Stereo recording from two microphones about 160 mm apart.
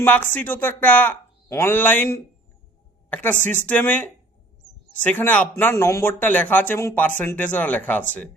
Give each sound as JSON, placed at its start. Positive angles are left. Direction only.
{"t": 0.0, "sound": "speech", "side_deg": 10}
{"t": 3.1, "sound": "speech", "side_deg": 10}